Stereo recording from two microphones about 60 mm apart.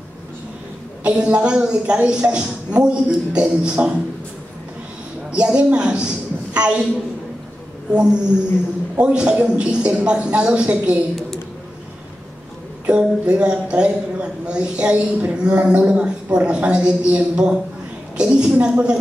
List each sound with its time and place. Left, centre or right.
1.0 s a woman's voice: centre
5.3 s a woman's voice: centre
7.9 s a woman's voice: centre
12.8 s a woman's voice: centre